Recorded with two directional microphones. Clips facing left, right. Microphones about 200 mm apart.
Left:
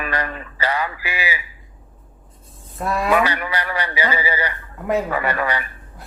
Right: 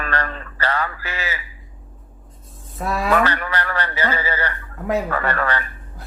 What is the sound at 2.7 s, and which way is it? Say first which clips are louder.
Speech: left 1 dB; centre (ahead or behind).